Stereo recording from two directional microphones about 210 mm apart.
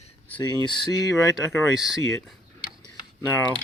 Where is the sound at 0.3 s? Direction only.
20° left (ahead or behind).